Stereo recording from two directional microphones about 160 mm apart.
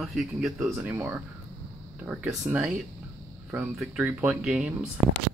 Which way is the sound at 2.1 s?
5° right (ahead or behind).